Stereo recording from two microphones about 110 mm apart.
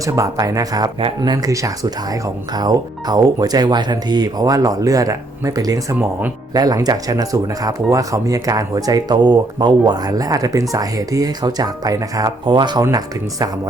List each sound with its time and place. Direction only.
0.0 s speech: 30° right (ahead or behind)